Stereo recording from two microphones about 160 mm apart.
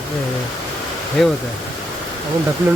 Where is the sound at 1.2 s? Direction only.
Centre (ahead or behind).